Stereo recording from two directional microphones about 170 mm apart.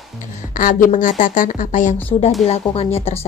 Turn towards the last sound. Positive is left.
turn(degrees=35)  # may be behind; listen again after turning